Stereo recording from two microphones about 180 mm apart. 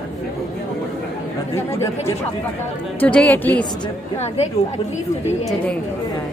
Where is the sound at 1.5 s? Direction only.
15° left (ahead or behind).